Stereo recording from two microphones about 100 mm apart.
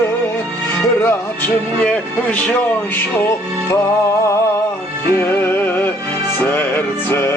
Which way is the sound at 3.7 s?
30° left (ahead or behind).